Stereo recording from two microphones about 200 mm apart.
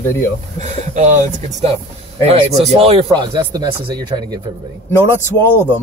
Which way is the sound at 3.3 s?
20° right (ahead or behind).